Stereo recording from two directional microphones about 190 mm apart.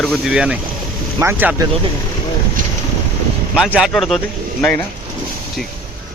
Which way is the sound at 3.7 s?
Centre (ahead or behind).